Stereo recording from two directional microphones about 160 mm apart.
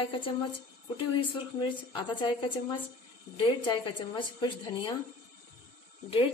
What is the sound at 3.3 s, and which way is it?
A woman's voice, 30° left (ahead or behind).